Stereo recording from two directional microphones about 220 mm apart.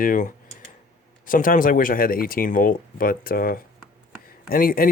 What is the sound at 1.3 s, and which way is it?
Speech, 35° left (ahead or behind).